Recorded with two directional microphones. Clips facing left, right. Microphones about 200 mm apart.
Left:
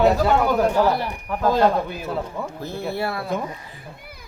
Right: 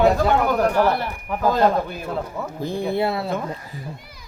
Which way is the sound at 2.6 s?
15° right (ahead or behind).